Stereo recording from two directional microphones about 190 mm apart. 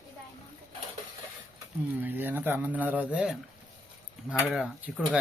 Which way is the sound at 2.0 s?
10° right (ahead or behind).